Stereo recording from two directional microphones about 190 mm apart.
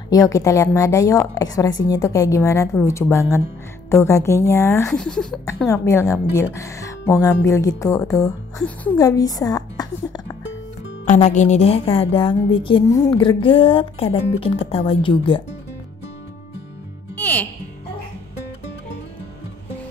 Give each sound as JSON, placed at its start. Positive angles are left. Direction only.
{"t": 0.1, "sound": "a woman's voice", "side_deg": 20}
{"t": 4.9, "sound": "speech", "side_deg": 5}
{"t": 5.7, "sound": "a woman's voice", "side_deg": 15}
{"t": 8.9, "sound": "a woman's voice", "side_deg": 20}
{"t": 11.1, "sound": "a woman's voice", "side_deg": 40}
{"t": 17.2, "sound": "music", "side_deg": 10}